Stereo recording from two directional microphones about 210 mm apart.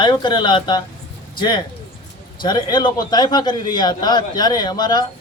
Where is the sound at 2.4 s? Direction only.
20° left (ahead or behind).